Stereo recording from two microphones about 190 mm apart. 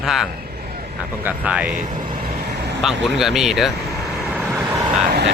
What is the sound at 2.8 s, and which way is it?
Speech, centre (ahead or behind).